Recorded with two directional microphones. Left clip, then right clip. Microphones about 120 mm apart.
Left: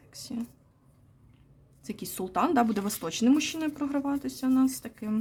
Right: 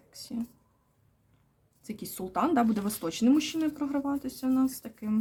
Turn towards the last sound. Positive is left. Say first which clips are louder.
# left 2 dB
turn(degrees=30)  # may be behind; listen again after turning